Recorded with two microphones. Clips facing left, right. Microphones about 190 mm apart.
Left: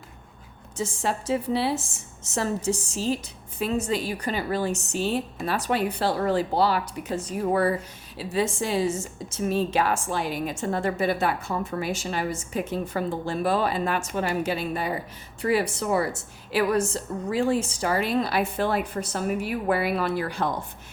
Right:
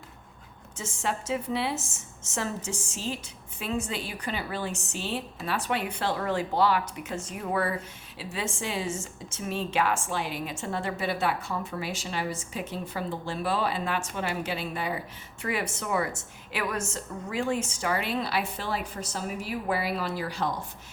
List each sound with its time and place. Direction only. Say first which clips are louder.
0.8 s a woman's voice: left 4 dB; 35° left (ahead or behind); by 20.7 s 55° left (ahead or behind)